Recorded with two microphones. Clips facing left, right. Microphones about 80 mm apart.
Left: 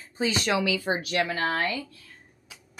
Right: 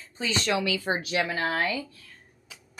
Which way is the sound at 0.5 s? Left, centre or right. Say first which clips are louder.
Left 1 dB; right.